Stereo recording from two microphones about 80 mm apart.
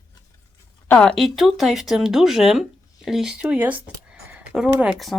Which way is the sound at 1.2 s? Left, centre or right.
Centre.